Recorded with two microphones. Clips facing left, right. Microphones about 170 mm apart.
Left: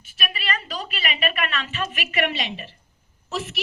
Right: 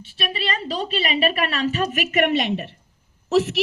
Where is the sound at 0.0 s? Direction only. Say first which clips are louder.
Right 5 dB; 30° right (ahead or behind); by 2.7 s 60° right (ahead or behind).